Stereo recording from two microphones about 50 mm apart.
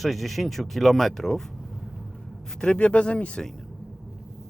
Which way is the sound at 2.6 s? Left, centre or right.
Left.